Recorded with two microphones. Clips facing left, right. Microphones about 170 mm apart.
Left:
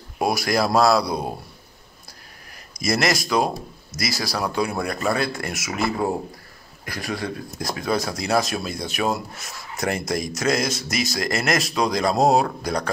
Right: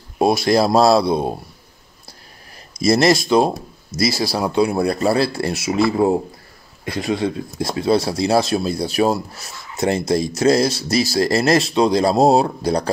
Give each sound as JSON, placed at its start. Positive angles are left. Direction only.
{"t": 0.2, "sound": "speech", "side_deg": -25}
{"t": 2.8, "sound": "speech", "side_deg": -30}